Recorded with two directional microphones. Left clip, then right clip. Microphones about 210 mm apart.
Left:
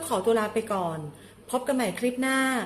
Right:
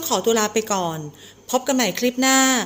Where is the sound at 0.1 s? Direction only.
50° right (ahead or behind).